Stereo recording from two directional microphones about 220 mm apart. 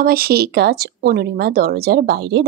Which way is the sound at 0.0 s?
45° right (ahead or behind).